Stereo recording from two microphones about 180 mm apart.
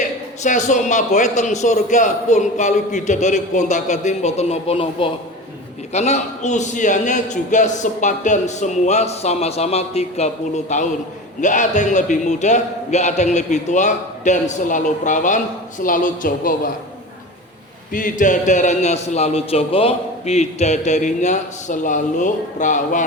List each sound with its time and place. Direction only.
0.4 s a man's voice: 45° left (ahead or behind)
17.9 s a man's voice: 45° left (ahead or behind)